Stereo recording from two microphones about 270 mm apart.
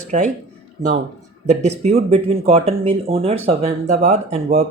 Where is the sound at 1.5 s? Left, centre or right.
Right.